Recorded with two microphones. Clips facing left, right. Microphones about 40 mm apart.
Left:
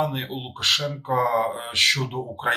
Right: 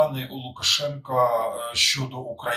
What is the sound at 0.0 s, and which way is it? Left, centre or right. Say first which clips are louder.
Speech: right 3 dB; left.